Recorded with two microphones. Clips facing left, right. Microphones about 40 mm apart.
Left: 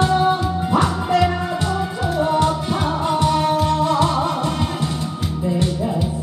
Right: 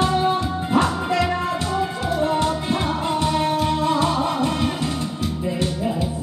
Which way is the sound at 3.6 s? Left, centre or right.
Centre.